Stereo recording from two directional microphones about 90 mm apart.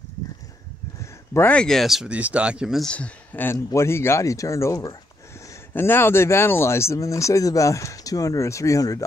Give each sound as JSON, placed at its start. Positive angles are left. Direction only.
{"t": 1.5, "sound": "speech", "side_deg": 5}
{"t": 2.0, "sound": "speech", "side_deg": -15}
{"t": 2.8, "sound": "speech", "side_deg": 10}
{"t": 3.5, "sound": "speech", "side_deg": 30}